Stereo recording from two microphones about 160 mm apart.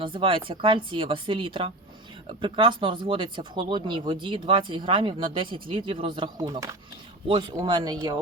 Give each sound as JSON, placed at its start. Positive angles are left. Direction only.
{"t": 0.0, "sound": "speech", "side_deg": -35}